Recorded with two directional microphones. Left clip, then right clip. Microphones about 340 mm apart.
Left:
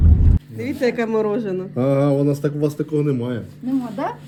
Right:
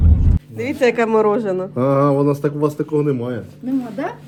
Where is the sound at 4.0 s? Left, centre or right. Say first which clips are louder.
Left 2 dB; left.